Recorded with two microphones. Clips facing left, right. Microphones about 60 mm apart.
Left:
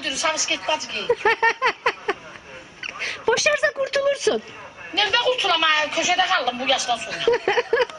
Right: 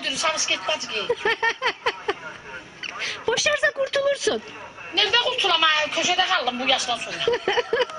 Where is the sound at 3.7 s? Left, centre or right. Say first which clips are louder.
Left 1 dB; centre.